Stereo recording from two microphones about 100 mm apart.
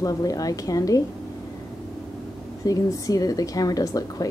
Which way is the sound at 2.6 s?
35° left (ahead or behind).